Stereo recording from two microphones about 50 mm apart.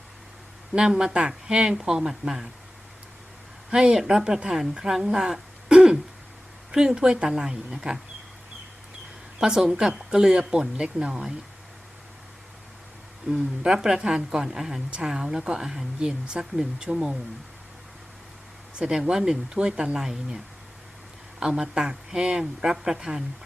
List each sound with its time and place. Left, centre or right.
0.7 s speech: centre
3.7 s speech: centre
9.4 s speech: centre
13.7 s speech: centre
14.8 s a woman's voice: right
15.1 s speech: centre
18.8 s speech: centre